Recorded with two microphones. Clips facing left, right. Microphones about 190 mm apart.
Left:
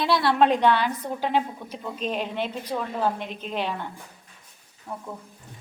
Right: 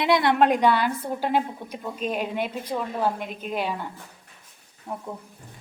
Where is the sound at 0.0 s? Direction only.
20° right (ahead or behind).